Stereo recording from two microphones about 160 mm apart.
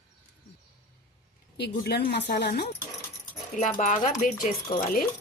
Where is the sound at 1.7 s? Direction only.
85° left.